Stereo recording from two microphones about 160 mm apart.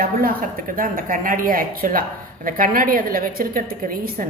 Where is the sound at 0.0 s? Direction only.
65° right (ahead or behind).